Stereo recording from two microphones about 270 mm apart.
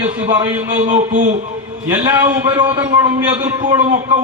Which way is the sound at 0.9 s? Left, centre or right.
Right.